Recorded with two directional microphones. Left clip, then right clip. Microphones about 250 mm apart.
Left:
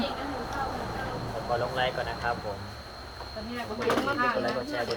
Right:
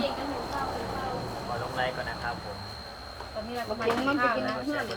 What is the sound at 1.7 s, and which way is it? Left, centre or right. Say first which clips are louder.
Vehicle: left 2 dB; left.